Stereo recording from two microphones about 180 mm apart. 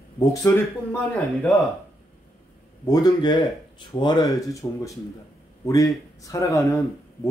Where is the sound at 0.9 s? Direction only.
5° left (ahead or behind).